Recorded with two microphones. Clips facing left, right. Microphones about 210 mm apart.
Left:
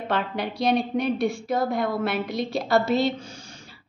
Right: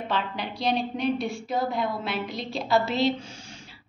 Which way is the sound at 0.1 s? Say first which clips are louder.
Left 5 dB; 50° left (ahead or behind).